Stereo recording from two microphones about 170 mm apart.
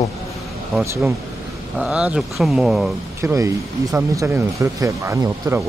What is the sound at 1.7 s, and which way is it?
Speech, 5° right (ahead or behind).